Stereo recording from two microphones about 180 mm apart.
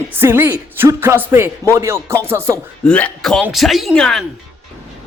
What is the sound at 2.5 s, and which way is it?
Speech, 5° left (ahead or behind).